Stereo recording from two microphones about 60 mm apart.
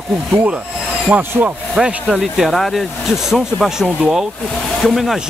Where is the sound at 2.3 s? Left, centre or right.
Centre.